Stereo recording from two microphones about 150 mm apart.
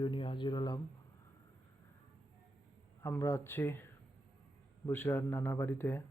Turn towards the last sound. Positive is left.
turn(degrees=15)  # may be behind; listen again after turning